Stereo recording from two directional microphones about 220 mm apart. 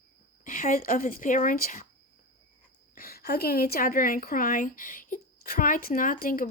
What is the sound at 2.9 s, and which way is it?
A woman's voice, 45° left (ahead or behind).